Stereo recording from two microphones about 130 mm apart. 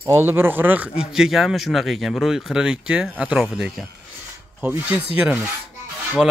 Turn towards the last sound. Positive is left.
turn(degrees=0)  # may be behind; listen again after turning